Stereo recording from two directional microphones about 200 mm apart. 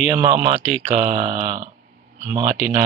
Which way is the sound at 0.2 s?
40° right (ahead or behind).